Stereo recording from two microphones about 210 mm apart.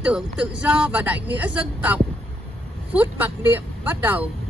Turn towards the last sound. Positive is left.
turn(degrees=-10)  # may be behind; listen again after turning